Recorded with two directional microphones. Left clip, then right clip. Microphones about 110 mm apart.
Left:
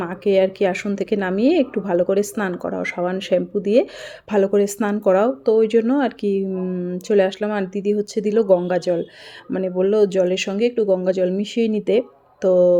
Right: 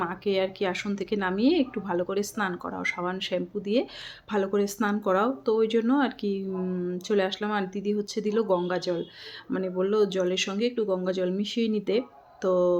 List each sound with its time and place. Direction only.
0.0 s speech: 40° left (ahead or behind)